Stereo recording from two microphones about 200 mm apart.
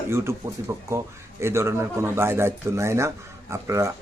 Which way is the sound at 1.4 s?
15° right (ahead or behind).